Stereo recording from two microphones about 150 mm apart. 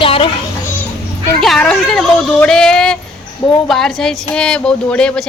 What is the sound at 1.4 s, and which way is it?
Speech, 5° left (ahead or behind).